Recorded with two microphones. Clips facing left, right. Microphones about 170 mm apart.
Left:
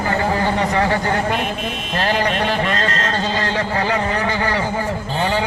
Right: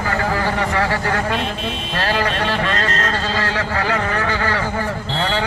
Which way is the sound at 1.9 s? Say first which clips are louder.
Left 2 dB; 20° left (ahead or behind).